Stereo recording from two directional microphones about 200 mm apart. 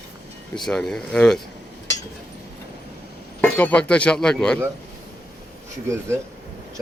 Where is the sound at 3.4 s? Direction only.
5° left (ahead or behind).